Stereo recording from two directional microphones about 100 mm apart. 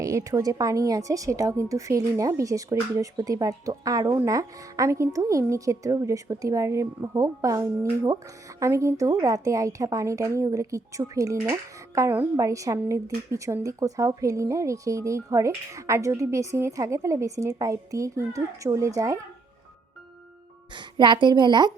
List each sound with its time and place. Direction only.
0.0 s a woman's voice: 30° right (ahead or behind)
20.7 s a woman's voice: 50° right (ahead or behind)